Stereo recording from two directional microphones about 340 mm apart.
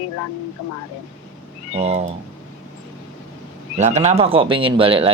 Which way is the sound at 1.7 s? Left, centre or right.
Centre.